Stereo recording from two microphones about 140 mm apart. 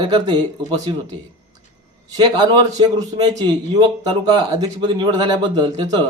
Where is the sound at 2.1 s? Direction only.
30° right (ahead or behind).